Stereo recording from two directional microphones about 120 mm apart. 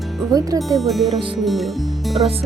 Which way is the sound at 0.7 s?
Centre (ahead or behind).